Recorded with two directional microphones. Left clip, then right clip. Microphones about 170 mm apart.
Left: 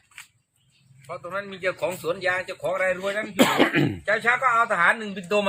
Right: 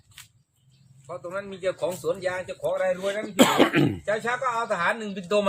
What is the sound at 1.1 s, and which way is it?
A man's voice, 15° right (ahead or behind).